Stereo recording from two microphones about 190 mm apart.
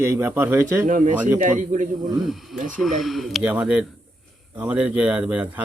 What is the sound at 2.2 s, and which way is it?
Speech, centre (ahead or behind).